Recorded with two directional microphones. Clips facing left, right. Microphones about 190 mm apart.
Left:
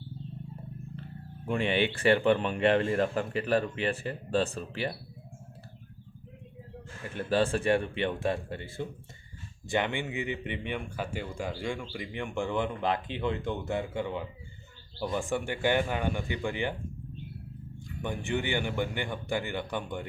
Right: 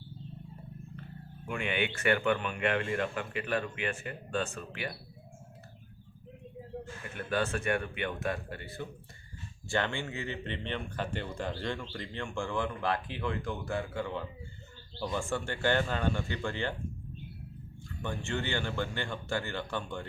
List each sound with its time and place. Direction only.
1.5 s speech: 30° left (ahead or behind)
7.0 s speech: 30° left (ahead or behind)
17.8 s speech: 15° left (ahead or behind)